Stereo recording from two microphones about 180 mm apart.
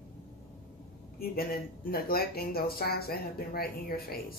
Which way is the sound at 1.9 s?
55° left (ahead or behind).